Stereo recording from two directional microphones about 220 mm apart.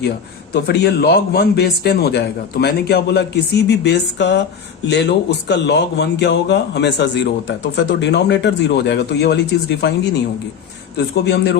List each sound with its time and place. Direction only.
0.5 s a man's voice: 45° left (ahead or behind)